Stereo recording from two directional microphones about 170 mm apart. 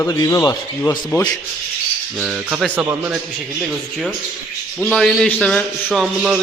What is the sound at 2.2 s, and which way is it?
Speech, 5° right (ahead or behind).